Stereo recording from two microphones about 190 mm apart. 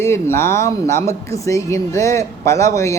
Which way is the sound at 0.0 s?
15° left (ahead or behind).